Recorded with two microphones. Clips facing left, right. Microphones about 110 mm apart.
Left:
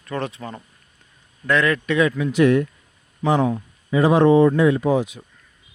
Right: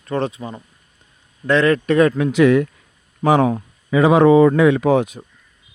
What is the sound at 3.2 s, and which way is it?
Speech, 90° right.